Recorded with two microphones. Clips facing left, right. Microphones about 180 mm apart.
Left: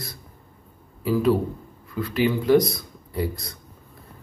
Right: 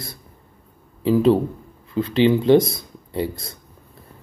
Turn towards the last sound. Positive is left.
turn(degrees=-25)  # may be behind; listen again after turning